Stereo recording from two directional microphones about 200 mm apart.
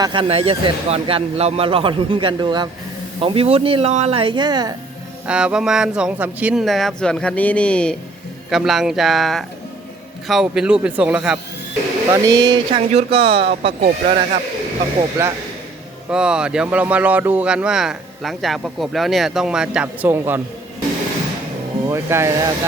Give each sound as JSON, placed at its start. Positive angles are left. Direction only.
{"t": 0.0, "sound": "speech", "side_deg": -25}
{"t": 5.2, "sound": "speech", "side_deg": -5}
{"t": 12.0, "sound": "speech", "side_deg": -15}
{"t": 12.9, "sound": "speech", "side_deg": -30}
{"t": 15.2, "sound": "speech", "side_deg": -10}
{"t": 21.8, "sound": "speech", "side_deg": -15}